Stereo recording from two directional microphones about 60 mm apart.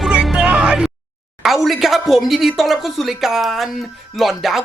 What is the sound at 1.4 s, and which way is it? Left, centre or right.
Speech, centre.